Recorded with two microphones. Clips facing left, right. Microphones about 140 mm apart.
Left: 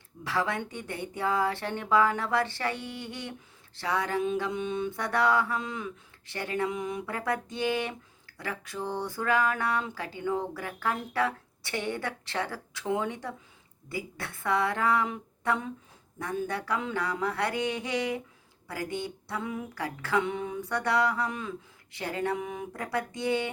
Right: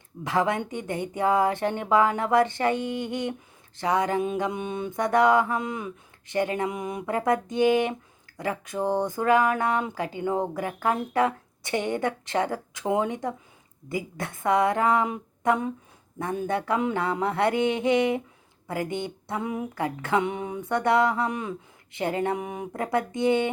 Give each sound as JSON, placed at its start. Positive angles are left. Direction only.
{"t": 0.3, "sound": "a woman's voice", "side_deg": -20}
{"t": 4.7, "sound": "mantra", "side_deg": -50}
{"t": 4.9, "sound": "a woman's voice", "side_deg": -20}
{"t": 5.5, "sound": "mantra", "side_deg": -50}
{"t": 5.8, "sound": "a woman's voice", "side_deg": -20}
{"t": 8.8, "sound": "mantra", "side_deg": -45}
{"t": 9.0, "sound": "a woman's voice", "side_deg": -20}
{"t": 15.4, "sound": "a sound", "side_deg": -20}
{"t": 16.5, "sound": "a woman's voice", "side_deg": -20}
{"t": 20.3, "sound": "a sound", "side_deg": -20}
{"t": 20.7, "sound": "a woman's voice", "side_deg": -20}